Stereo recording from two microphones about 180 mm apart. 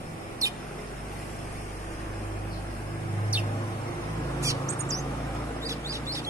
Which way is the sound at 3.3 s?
5° right (ahead or behind).